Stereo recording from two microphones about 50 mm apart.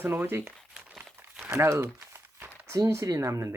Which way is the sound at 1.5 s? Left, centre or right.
Right.